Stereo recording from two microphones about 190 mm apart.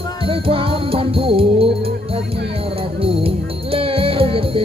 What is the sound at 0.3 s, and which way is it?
Music, 30° right (ahead or behind).